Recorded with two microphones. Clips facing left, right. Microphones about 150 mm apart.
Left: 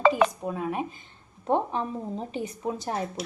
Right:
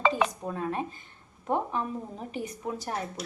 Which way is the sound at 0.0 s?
5° left (ahead or behind).